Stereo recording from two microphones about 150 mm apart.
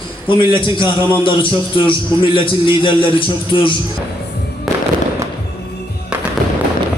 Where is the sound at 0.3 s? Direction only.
35° left (ahead or behind).